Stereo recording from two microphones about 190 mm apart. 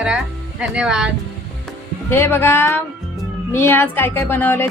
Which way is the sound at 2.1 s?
10° left (ahead or behind).